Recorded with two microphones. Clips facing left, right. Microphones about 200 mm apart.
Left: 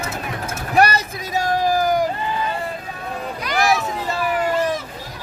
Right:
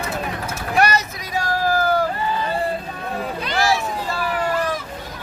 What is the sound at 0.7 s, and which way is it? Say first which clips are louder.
Vehicle: left 2 dB; 35° left (ahead or behind).